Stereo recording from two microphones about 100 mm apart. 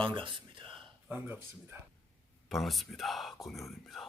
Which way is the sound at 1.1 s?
20° right (ahead or behind).